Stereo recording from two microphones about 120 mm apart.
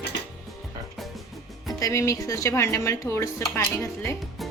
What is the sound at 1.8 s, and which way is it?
Speech, 25° left (ahead or behind).